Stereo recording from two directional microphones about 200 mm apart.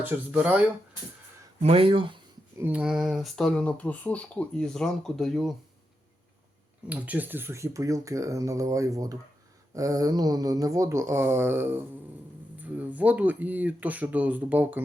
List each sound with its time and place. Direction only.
0.0 s speech: 10° right (ahead or behind)
1.6 s speech: 30° right (ahead or behind)
2.6 s speech: 5° right (ahead or behind)
6.8 s speech: 5° right (ahead or behind)